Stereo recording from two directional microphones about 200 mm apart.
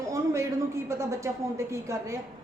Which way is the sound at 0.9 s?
15° right (ahead or behind).